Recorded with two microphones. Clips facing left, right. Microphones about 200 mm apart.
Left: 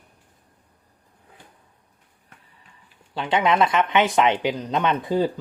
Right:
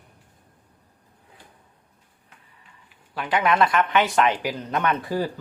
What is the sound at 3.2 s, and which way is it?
Speech, 25° left (ahead or behind).